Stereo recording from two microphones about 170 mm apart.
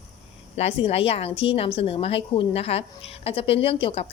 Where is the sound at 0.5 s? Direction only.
35° left (ahead or behind).